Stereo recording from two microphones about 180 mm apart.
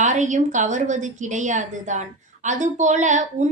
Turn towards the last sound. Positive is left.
turn(degrees=-40)  # may be behind; listen again after turning